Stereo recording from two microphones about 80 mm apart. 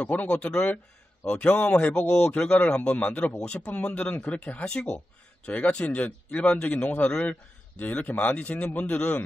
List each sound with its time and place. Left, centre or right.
0.0 s speech: centre